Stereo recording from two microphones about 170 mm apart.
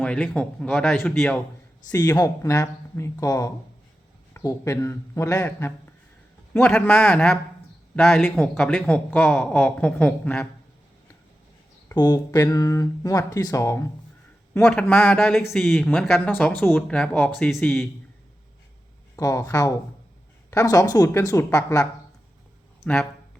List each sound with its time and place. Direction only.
0.0 s speech: 5° left (ahead or behind)
1.9 s speech: 20° left (ahead or behind)
11.9 s speech: 25° left (ahead or behind)
14.6 s speech: 5° left (ahead or behind)
19.1 s speech: 20° left (ahead or behind)
22.8 s speech: 5° left (ahead or behind)